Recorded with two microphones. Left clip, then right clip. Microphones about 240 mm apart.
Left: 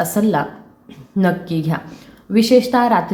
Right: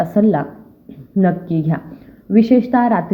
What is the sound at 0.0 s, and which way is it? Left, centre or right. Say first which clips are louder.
A woman's voice: right 2 dB; centre.